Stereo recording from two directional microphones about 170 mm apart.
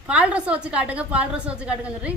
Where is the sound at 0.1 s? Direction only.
5° right (ahead or behind).